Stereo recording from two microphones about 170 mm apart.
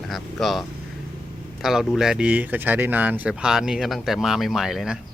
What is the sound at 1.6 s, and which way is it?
Speech, centre (ahead or behind).